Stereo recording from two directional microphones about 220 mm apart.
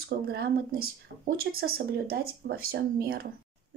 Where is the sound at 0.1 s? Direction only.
50° right (ahead or behind).